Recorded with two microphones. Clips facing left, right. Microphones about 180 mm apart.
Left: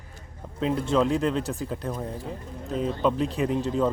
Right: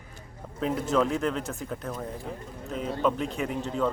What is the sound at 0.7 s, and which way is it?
Speech, 30° left (ahead or behind).